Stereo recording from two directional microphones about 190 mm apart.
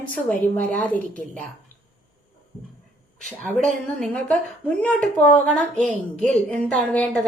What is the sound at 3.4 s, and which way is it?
A woman's voice, 5° left (ahead or behind).